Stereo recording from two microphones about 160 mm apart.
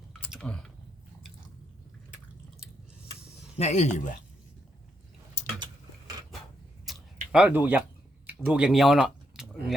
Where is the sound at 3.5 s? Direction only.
45° left (ahead or behind).